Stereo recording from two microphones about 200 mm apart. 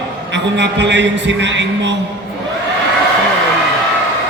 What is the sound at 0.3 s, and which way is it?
A man's voice, 60° right (ahead or behind).